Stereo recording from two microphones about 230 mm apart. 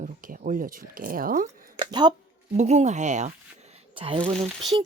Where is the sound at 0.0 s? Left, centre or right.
Right.